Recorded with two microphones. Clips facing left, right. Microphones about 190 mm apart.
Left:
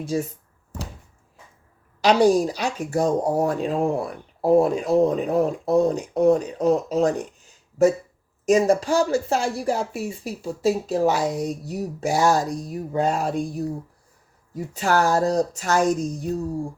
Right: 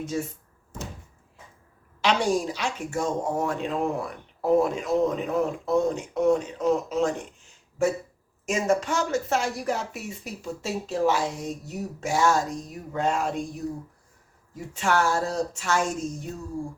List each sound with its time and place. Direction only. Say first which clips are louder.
0.0 s speech: left 4 dB; 35° left (ahead or behind)
2.0 s speech: left 7 dB; 40° left (ahead or behind)